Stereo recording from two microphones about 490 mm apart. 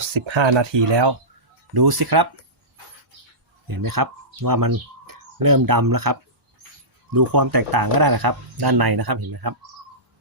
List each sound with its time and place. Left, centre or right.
0.0 s speech: right
3.7 s speech: right